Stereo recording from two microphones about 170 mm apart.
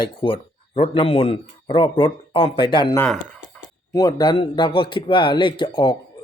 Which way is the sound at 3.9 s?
25° left (ahead or behind).